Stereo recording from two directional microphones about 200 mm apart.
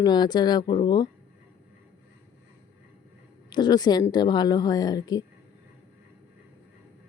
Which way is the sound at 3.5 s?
20° left (ahead or behind).